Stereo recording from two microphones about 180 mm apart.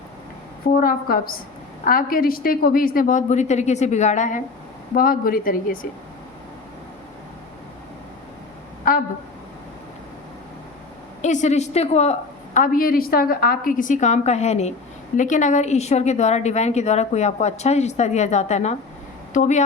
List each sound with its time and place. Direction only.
0.8 s a woman's voice: 55° left (ahead or behind)
8.9 s speech: 50° left (ahead or behind)
11.2 s speech: 40° left (ahead or behind)
12.5 s a woman's voice: 50° left (ahead or behind)